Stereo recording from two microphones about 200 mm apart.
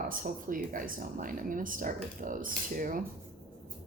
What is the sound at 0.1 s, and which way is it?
Speech, 45° right (ahead or behind).